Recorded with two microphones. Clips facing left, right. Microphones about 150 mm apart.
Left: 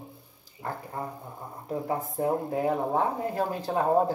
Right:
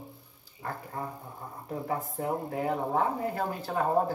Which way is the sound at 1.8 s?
15° left (ahead or behind).